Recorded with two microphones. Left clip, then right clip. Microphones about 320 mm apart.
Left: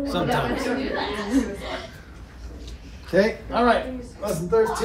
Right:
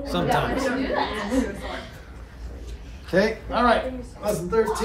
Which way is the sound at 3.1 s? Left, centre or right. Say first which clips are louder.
Left 1 dB; centre.